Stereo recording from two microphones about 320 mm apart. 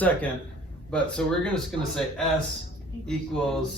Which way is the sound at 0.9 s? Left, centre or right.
Centre.